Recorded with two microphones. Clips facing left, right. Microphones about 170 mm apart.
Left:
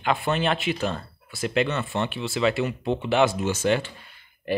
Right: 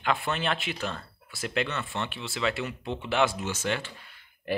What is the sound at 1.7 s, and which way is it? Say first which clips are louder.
Speech: left 6 dB; 35° left (ahead or behind).